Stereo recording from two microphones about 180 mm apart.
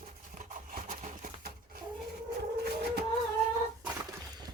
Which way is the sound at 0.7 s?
50° right (ahead or behind).